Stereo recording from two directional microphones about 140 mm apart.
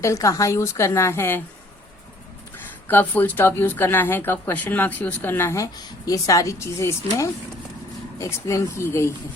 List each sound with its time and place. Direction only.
0.0 s a woman's voice: 20° left (ahead or behind)
2.8 s a woman's voice: 15° left (ahead or behind)